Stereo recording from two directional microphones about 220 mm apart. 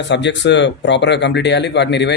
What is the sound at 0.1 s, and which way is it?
A man's voice, 55° left (ahead or behind).